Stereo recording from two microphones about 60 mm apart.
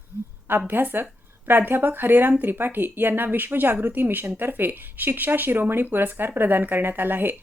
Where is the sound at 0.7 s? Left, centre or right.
Right.